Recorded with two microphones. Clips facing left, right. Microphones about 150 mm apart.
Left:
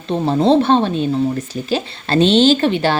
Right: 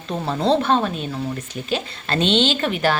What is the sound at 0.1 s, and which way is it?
Speech, 25° left (ahead or behind).